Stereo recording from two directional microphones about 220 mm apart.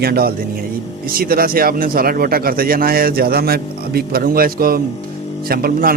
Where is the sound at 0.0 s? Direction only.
45° right (ahead or behind).